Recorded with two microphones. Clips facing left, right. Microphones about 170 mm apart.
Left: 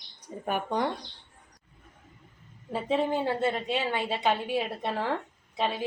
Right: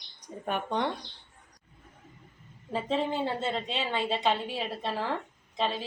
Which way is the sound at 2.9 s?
10° left (ahead or behind).